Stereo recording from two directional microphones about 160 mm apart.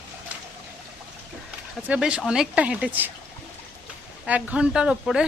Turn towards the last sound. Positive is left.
turn(degrees=-5)  # may be behind; listen again after turning